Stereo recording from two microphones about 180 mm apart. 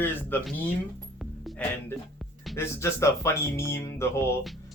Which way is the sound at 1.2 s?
Centre (ahead or behind).